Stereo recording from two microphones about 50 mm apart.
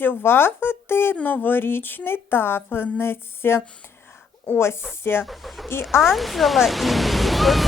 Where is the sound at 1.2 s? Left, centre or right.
Left.